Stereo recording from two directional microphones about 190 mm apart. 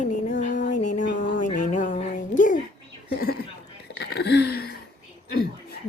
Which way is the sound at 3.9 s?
65° left (ahead or behind).